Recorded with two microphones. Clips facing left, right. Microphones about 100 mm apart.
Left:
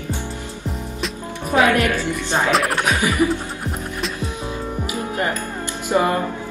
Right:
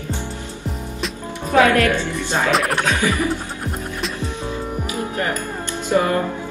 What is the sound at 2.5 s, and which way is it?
Speech, centre (ahead or behind).